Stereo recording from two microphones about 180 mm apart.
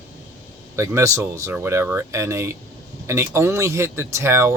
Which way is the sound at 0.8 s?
15° right (ahead or behind).